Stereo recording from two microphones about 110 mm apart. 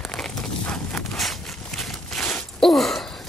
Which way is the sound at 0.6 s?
10° left (ahead or behind).